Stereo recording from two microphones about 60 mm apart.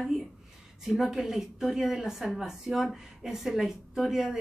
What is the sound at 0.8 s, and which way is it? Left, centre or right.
A woman's voice, centre.